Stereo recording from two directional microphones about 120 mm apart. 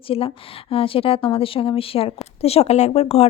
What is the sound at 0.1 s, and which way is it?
A woman's voice, 50° left (ahead or behind).